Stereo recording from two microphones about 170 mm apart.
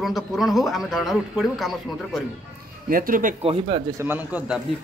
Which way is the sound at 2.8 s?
55° right (ahead or behind).